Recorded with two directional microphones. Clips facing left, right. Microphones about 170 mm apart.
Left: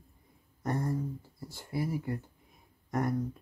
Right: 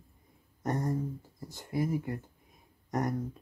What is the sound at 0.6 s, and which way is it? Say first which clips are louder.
Speech: right 1 dB; 20° right (ahead or behind).